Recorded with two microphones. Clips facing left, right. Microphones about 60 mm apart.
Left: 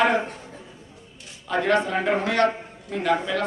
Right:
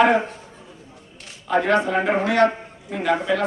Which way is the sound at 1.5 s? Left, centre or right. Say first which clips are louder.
Right 3 dB; centre.